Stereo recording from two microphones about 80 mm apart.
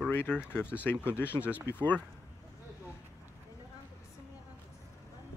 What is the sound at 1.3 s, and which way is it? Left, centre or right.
Speech, centre.